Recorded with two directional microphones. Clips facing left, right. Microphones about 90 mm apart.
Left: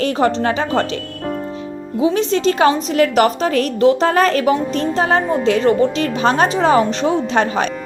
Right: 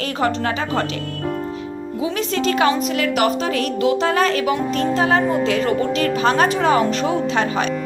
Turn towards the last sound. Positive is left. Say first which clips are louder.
# left 3 dB
turn(degrees=35)  # may be behind; listen again after turning